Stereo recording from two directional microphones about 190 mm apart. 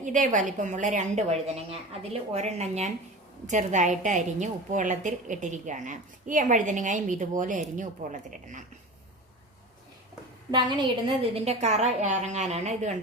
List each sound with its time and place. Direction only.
0.0 s a woman's voice: 40° right (ahead or behind)
10.5 s a woman's voice: 25° right (ahead or behind)
11.3 s a woman's voice: 35° right (ahead or behind)